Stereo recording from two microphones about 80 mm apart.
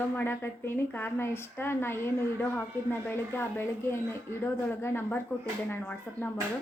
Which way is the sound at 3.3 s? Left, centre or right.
Left.